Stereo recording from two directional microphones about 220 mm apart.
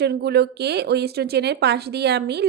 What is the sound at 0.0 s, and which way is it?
Speech, 45° right (ahead or behind).